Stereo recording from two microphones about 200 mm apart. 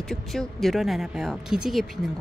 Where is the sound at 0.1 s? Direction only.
Centre (ahead or behind).